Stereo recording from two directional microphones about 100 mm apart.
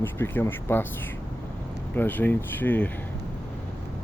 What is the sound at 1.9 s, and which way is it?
Speech, 20° left (ahead or behind).